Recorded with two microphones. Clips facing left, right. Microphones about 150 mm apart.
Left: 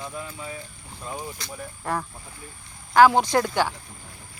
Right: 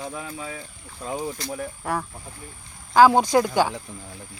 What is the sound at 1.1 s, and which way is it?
Speech, 40° right (ahead or behind).